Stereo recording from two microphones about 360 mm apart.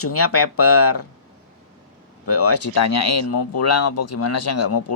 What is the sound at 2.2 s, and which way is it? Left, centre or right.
Speech, left.